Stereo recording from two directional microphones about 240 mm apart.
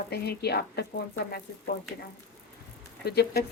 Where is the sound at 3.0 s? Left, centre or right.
Left.